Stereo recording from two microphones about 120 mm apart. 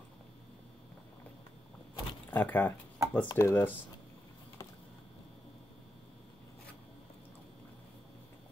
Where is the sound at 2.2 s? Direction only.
15° left (ahead or behind).